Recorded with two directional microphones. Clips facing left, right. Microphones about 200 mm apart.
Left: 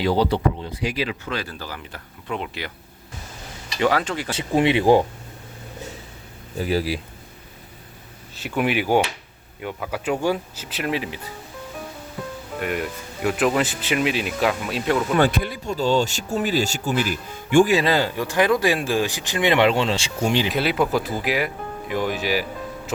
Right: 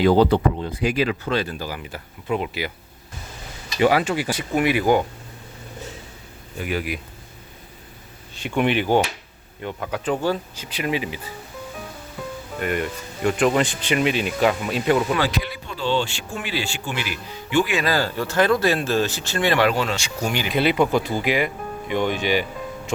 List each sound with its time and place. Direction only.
0.0 s speech: 50° right (ahead or behind)
1.2 s speech: 25° right (ahead or behind)
1.5 s speech: 10° right (ahead or behind)
3.8 s speech: 10° right (ahead or behind)
4.3 s speech: 25° left (ahead or behind)
6.6 s speech: 35° left (ahead or behind)
8.4 s speech: 5° left (ahead or behind)
12.5 s speech: centre (ahead or behind)
15.2 s speech: 45° left (ahead or behind)
17.7 s speech: 20° left (ahead or behind)
20.5 s speech: centre (ahead or behind)